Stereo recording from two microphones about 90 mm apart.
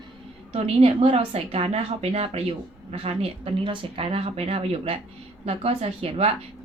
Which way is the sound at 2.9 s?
90° right.